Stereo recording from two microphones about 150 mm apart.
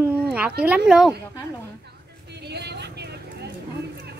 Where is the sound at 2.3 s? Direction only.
90° right.